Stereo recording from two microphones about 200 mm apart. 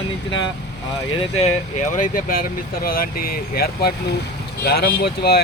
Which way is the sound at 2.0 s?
45° left (ahead or behind).